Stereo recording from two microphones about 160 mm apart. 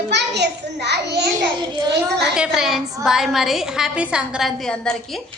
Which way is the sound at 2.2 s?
5° right (ahead or behind).